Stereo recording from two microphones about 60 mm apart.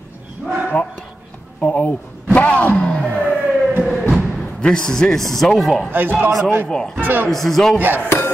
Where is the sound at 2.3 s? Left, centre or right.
Left.